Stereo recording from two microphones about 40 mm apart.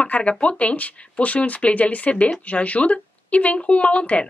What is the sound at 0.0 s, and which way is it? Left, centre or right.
A woman's voice, left.